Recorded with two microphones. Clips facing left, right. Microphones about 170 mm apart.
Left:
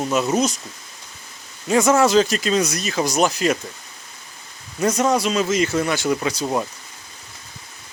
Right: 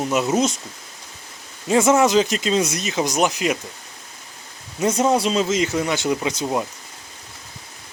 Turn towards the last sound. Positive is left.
turn(degrees=-20)  # may be behind; listen again after turning